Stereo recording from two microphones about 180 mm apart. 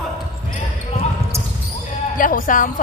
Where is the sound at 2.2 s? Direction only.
50° left (ahead or behind).